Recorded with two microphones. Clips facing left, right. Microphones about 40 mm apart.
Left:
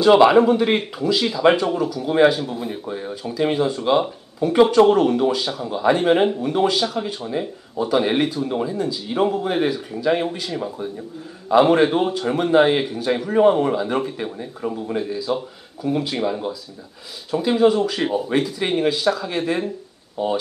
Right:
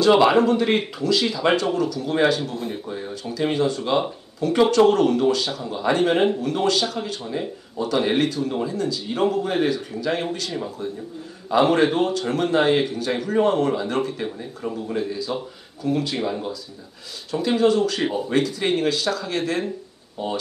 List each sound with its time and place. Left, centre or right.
0.0 s a man's voice: centre
17.3 s a man's voice: centre